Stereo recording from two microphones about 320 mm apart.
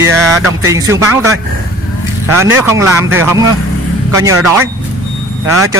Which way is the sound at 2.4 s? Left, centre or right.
Centre.